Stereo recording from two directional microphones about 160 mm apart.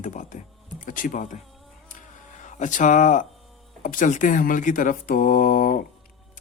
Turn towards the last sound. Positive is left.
turn(degrees=60)  # may be behind; listen again after turning